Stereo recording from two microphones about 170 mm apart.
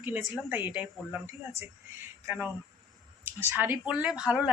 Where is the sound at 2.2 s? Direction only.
15° right (ahead or behind).